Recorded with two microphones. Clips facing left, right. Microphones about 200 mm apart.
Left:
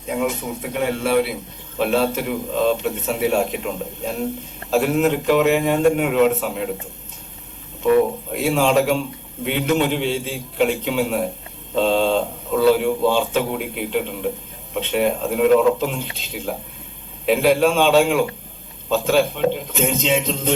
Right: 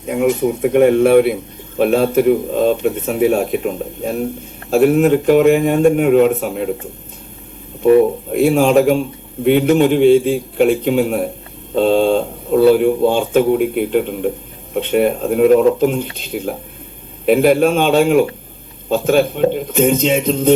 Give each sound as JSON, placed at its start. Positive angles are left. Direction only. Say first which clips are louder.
{"t": 0.1, "sound": "a man's voice", "louder": "right 8 dB", "side_deg": -55}
{"t": 8.3, "sound": "speech", "louder": "right 6 dB", "side_deg": -50}